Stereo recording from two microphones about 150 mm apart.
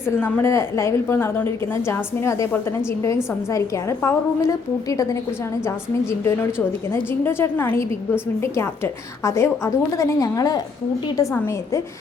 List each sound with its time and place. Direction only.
0.0 s a woman's voice: 10° left (ahead or behind)